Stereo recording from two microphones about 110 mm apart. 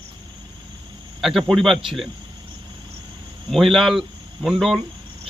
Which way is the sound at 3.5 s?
Centre (ahead or behind).